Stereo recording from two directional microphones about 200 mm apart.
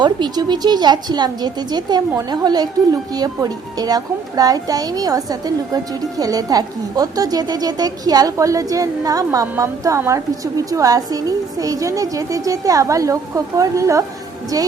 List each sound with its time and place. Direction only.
0.0 s a woman's voice: 20° right (ahead or behind)